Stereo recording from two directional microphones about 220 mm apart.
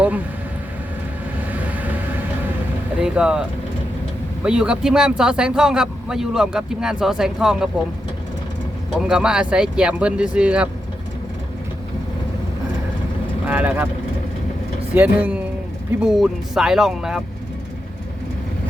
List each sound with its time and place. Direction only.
1.5 s vehicle: 5° right (ahead or behind)
3.0 s speech: 5° right (ahead or behind)
4.4 s speech: 5° right (ahead or behind)
9.0 s speech: 5° right (ahead or behind)
13.5 s speech: 5° right (ahead or behind)
14.9 s speech: 5° right (ahead or behind)